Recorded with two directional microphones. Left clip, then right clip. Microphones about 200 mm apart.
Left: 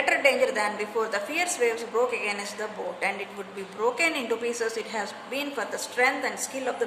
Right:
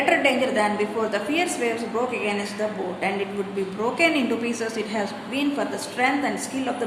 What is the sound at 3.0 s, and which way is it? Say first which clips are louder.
A woman's voice: right 5 dB; 25° left (ahead or behind).